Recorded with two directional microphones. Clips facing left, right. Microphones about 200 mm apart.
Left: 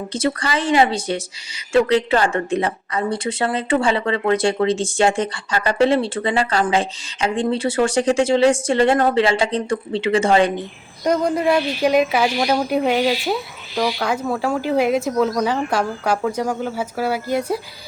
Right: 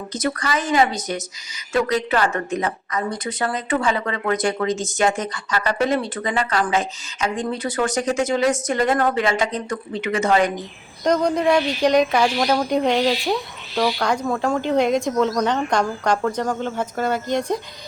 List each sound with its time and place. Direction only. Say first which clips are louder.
0.1 s a woman's voice: left 2 dB; 30° left (ahead or behind)
11.0 s a woman's voice: even; 5° left (ahead or behind)